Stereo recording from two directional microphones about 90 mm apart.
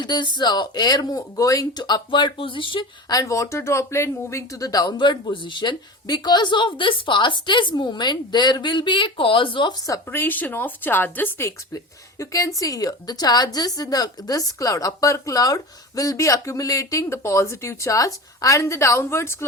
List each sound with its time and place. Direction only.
0.0 s speech: 55° left (ahead or behind); by 1.8 s 40° left (ahead or behind)
1.8 s speech: 60° left (ahead or behind)
3.1 s speech: 40° left (ahead or behind); by 9.7 s 65° left (ahead or behind)
10.1 s a woman's voice: 20° left (ahead or behind)